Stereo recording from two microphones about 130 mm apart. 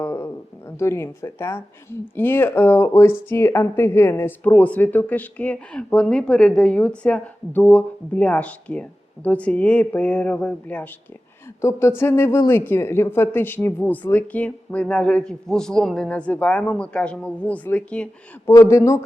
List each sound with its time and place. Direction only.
0.0 s a sound: 15° left (ahead or behind)
0.8 s speech: 20° left (ahead or behind)
18.4 s speech: 20° left (ahead or behind)